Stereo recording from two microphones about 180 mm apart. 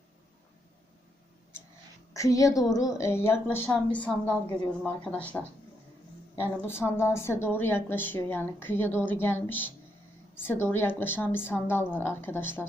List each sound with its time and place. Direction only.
2.1 s a woman's voice: 15° left (ahead or behind)
6.7 s a woman's voice: 15° left (ahead or behind)